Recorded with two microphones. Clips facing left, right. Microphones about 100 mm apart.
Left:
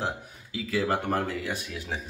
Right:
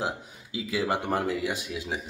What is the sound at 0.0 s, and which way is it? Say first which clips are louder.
Speech: even; 15° right (ahead or behind).